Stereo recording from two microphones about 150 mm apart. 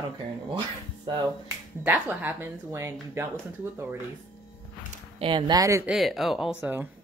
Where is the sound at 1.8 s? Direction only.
10° right (ahead or behind).